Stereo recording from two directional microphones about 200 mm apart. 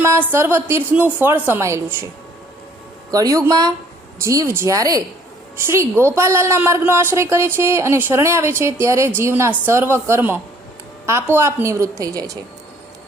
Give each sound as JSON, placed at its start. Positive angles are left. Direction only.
{"t": 0.3, "sound": "a woman's voice", "side_deg": -10}
{"t": 3.1, "sound": "a woman's voice", "side_deg": -15}